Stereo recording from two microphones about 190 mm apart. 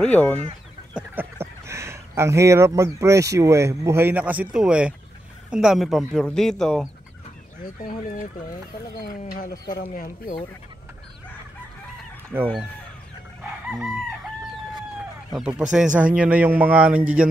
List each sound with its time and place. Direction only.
0.0 s speech: 5° left (ahead or behind)
0.4 s chicken: 25° right (ahead or behind)
1.1 s a sound: 15° right (ahead or behind)
3.3 s a man's voice: 15° right (ahead or behind)
9.8 s speech: 45° left (ahead or behind)
12.3 s speech: 10° right (ahead or behind)
13.4 s chicken: 5° right (ahead or behind)
15.7 s a man's voice: 5° right (ahead or behind)